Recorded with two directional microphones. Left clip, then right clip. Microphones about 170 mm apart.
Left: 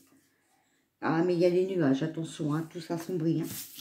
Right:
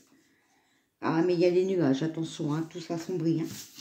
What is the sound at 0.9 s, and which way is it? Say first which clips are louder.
Speech: right 1 dB; 20° right (ahead or behind).